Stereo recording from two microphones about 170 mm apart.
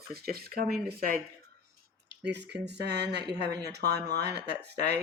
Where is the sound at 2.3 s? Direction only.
80° right.